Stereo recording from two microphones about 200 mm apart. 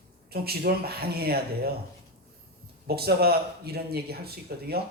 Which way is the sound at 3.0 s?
50° right (ahead or behind).